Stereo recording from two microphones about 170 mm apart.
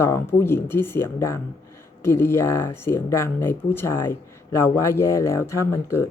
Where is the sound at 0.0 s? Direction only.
15° left (ahead or behind).